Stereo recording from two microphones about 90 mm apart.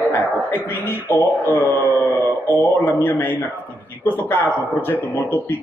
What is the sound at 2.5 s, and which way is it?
Speech, 30° left (ahead or behind).